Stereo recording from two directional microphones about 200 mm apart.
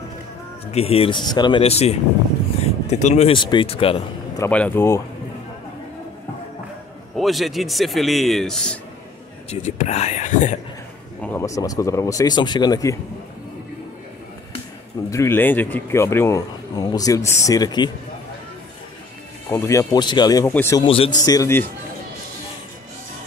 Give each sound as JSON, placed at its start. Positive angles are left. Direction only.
{"t": 0.7, "sound": "speech", "side_deg": 30}
{"t": 4.4, "sound": "speech", "side_deg": 5}
{"t": 7.2, "sound": "a man's voice", "side_deg": 0}
{"t": 9.5, "sound": "speech", "side_deg": 35}
{"t": 11.1, "sound": "speech", "side_deg": 10}
{"t": 15.0, "sound": "speech", "side_deg": 15}
{"t": 19.5, "sound": "speech", "side_deg": 15}
{"t": 20.8, "sound": "speech", "side_deg": 25}